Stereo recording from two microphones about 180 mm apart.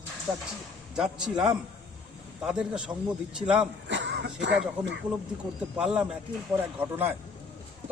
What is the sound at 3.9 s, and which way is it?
Speech, 75° right (ahead or behind).